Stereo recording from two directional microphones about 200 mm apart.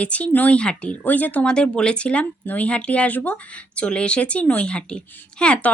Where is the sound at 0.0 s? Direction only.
5° left (ahead or behind).